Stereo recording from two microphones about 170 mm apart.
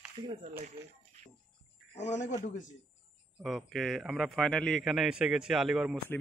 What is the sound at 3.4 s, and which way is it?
A man's voice, centre (ahead or behind).